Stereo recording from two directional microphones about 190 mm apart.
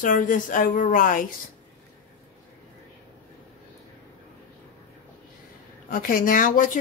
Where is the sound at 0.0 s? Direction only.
45° left (ahead or behind).